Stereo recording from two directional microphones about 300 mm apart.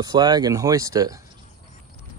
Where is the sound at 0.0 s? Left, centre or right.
Centre.